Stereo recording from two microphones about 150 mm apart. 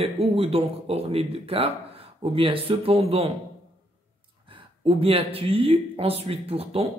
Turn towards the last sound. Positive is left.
turn(degrees=-40)  # may be behind; listen again after turning